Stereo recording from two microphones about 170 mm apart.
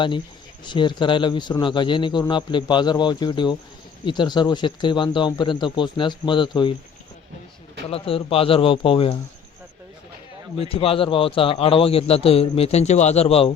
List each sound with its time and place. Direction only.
0.6 s a man's voice: 25° left (ahead or behind)
7.9 s a man's voice: 35° left (ahead or behind)
10.6 s a man's voice: 35° left (ahead or behind)